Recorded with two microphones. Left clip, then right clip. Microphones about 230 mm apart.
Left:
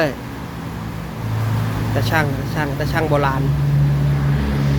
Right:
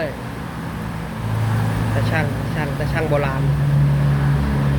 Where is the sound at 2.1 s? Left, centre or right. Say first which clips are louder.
Left 3 dB; left.